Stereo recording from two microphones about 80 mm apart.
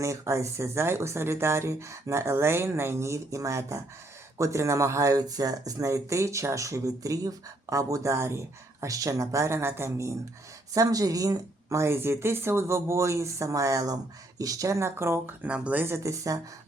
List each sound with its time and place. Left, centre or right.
0.0 s speech: right
10.8 s speech: right
15.4 s speech: centre
15.9 s speech: right